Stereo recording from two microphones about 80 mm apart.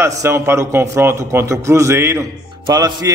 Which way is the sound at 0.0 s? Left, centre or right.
Right.